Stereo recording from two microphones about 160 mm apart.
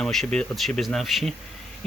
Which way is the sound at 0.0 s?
5° left (ahead or behind).